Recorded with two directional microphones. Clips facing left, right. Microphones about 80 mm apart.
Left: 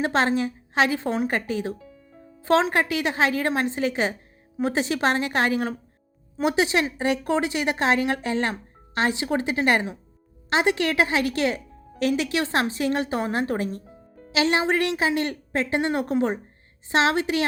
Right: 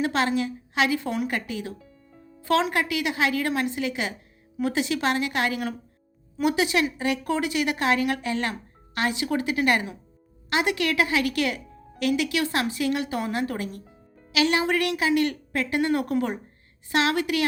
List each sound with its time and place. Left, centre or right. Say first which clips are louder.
0.0 s a woman's voice: left 2 dB; left